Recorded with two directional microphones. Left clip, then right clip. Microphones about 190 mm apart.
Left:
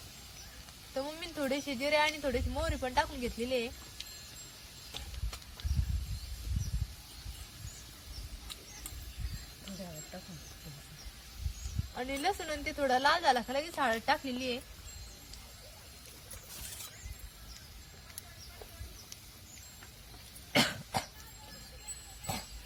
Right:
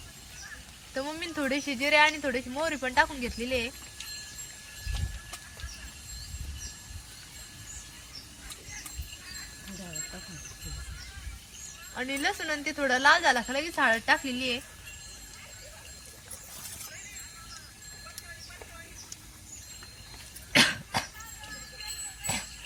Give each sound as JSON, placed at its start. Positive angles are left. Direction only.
{"t": 0.9, "sound": "a woman's voice", "side_deg": 55}
{"t": 11.9, "sound": "a woman's voice", "side_deg": 55}
{"t": 20.5, "sound": "cough", "side_deg": 60}